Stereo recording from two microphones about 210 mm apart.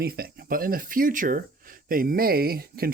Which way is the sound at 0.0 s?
45° right (ahead or behind).